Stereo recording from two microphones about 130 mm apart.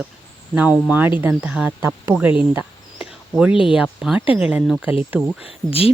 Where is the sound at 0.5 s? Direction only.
10° right (ahead or behind).